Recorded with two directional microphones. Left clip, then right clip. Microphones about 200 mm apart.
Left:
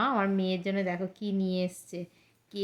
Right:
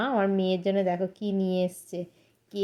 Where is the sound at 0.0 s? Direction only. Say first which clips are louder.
Right 2 dB; 5° right (ahead or behind).